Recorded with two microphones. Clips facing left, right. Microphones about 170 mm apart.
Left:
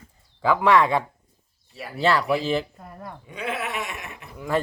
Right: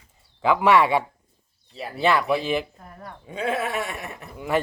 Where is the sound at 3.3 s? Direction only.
30° right (ahead or behind).